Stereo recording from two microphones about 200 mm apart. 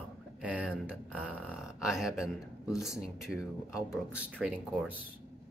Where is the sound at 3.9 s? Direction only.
5° right (ahead or behind).